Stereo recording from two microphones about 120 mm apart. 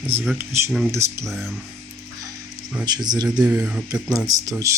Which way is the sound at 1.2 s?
Centre (ahead or behind).